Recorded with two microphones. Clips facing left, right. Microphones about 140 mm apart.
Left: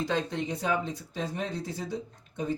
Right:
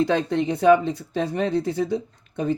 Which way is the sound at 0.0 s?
65° right (ahead or behind).